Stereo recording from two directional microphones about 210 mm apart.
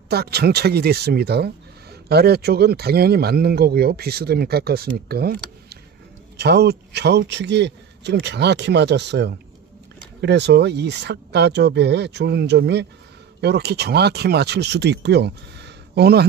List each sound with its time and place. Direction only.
0.1 s speech: 50° right (ahead or behind)